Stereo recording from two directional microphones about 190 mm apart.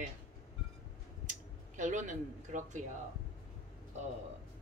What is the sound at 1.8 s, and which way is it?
A woman's voice, 40° right (ahead or behind).